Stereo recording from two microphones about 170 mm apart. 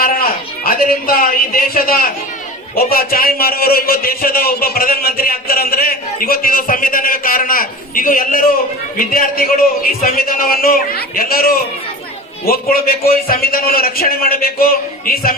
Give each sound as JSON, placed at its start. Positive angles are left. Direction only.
{"t": 0.0, "sound": "a man's voice", "side_deg": 60}